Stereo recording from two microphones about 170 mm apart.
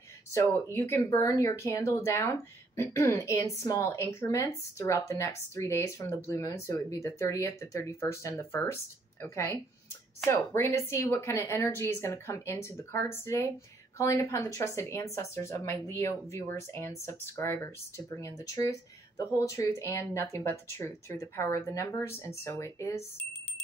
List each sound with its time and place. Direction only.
0.3 s speech: 15° left (ahead or behind)